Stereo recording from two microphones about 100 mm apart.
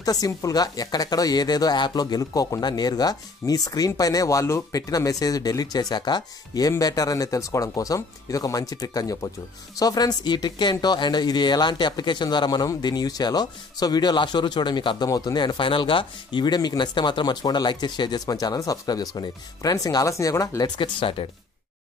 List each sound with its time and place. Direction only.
0.0 s speech: 40° left (ahead or behind)
15.0 s speech: 35° left (ahead or behind)
15.3 s speech: 50° left (ahead or behind)